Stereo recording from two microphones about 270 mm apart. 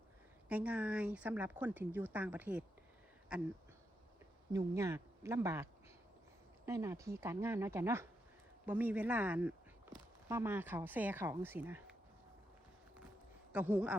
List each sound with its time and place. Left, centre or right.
0.4 s speech: centre
4.5 s speech: centre
6.7 s speech: centre
13.5 s speech: centre